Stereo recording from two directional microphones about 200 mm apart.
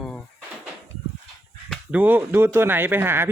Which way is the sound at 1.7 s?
10° right (ahead or behind).